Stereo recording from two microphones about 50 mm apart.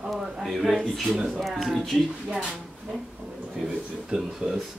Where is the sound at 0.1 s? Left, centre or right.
Centre.